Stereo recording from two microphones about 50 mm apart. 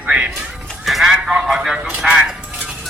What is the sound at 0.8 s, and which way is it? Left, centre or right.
Speech, centre.